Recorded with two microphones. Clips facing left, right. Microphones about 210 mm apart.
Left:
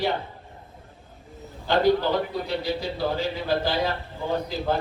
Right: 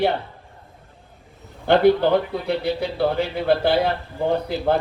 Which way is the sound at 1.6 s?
60° right (ahead or behind).